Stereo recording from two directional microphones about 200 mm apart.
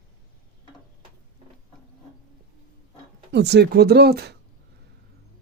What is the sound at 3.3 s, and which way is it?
A man's voice, 55° right (ahead or behind).